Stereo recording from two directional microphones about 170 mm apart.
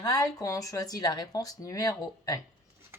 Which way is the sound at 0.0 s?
20° left (ahead or behind).